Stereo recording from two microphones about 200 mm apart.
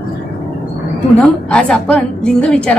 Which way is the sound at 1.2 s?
5° left (ahead or behind).